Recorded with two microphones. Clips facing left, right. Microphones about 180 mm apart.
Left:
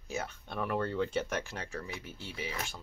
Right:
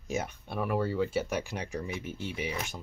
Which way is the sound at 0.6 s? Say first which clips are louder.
Right 3 dB; 5° right (ahead or behind).